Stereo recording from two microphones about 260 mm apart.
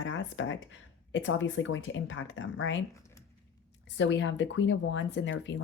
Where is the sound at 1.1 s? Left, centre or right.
Left.